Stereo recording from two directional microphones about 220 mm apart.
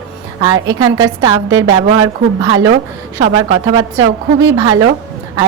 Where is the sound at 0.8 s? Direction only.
15° right (ahead or behind).